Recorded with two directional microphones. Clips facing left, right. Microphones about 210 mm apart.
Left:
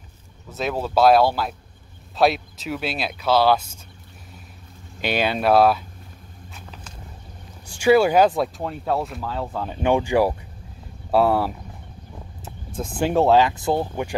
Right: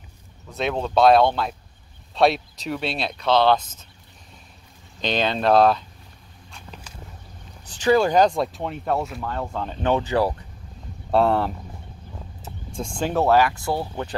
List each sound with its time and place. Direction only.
0.5 s speech: 5° left (ahead or behind)
5.0 s speech: 10° left (ahead or behind)
7.6 s speech: 10° left (ahead or behind)
12.4 s a sound: centre (ahead or behind)
13.0 s speech: 15° left (ahead or behind)